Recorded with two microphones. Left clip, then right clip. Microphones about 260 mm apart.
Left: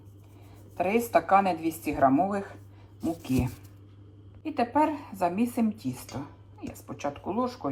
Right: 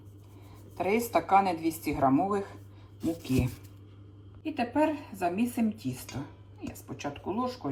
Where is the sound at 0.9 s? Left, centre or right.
Centre.